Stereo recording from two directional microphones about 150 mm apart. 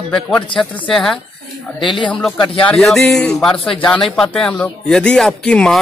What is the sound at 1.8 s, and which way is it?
Speech, 35° left (ahead or behind).